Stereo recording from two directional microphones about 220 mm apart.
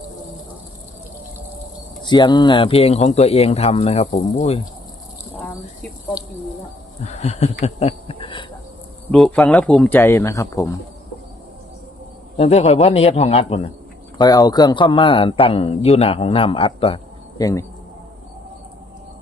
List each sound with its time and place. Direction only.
2.0 s a man's voice: 20° left (ahead or behind)
7.0 s a man's voice: 30° left (ahead or behind)
9.1 s speech: centre (ahead or behind)
12.4 s a man's voice: 30° left (ahead or behind)
14.2 s a man's voice: 15° left (ahead or behind)